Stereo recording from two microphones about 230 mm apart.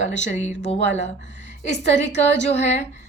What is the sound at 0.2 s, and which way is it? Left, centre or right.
Speech, left.